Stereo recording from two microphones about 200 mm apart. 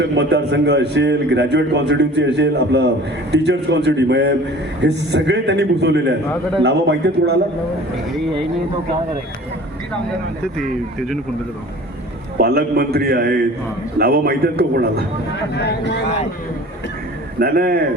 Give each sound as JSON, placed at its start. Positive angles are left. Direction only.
{"t": 0.0, "sound": "a man's voice", "side_deg": -60}
{"t": 12.4, "sound": "a man's voice", "side_deg": -50}
{"t": 15.5, "sound": "speech", "side_deg": 60}
{"t": 17.4, "sound": "a man's voice", "side_deg": -50}